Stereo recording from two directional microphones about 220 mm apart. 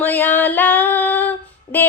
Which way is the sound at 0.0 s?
10° left (ahead or behind).